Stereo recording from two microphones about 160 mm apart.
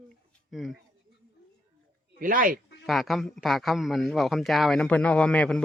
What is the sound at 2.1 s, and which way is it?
Speech, 60° right (ahead or behind).